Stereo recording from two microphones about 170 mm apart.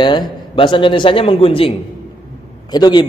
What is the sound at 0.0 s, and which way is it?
A man's voice, 25° left (ahead or behind).